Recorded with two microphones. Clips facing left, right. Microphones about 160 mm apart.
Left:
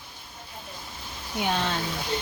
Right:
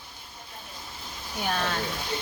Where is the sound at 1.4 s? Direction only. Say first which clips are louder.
Left 2 dB; 20° left (ahead or behind).